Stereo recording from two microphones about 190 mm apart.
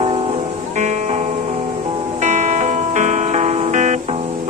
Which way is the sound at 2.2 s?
40° right (ahead or behind).